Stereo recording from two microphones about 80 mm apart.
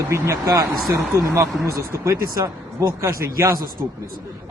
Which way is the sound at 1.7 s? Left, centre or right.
Right.